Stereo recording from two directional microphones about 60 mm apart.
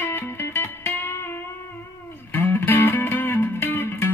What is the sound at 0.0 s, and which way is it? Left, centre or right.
Music, left.